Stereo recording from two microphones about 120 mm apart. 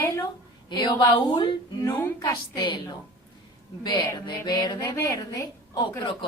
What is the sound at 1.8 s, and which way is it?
Speech, 15° left (ahead or behind).